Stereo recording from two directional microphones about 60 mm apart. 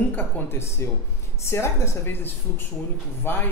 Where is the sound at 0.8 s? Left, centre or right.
Left.